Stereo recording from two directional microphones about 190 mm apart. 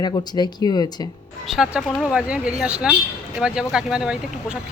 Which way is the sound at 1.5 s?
Centre (ahead or behind).